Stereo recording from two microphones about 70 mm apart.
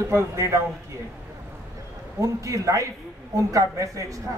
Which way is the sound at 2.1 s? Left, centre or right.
Right.